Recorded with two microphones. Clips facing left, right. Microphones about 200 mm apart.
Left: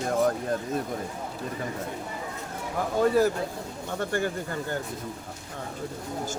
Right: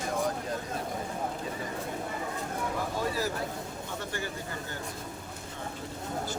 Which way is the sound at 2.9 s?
55° left (ahead or behind).